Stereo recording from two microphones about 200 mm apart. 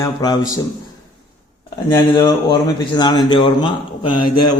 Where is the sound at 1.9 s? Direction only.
20° left (ahead or behind).